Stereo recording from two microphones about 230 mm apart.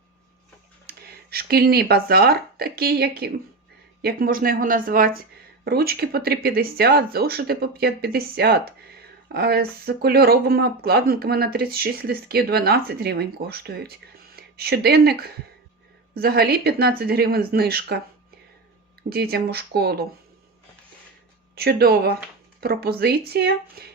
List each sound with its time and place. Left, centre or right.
0.9 s speech: right
19.1 s speech: right
21.5 s speech: right